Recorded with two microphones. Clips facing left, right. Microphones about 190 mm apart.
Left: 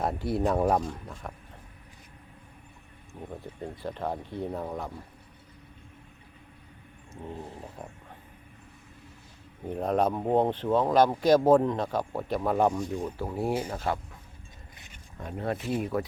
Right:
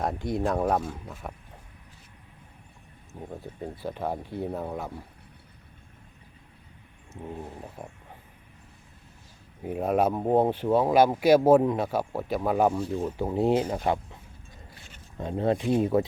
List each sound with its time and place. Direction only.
0.0 s speech: 5° left (ahead or behind)
3.6 s speech: 5° right (ahead or behind)
9.6 s speech: 5° right (ahead or behind)
13.1 s speech: 20° right (ahead or behind)
15.2 s speech: 25° right (ahead or behind)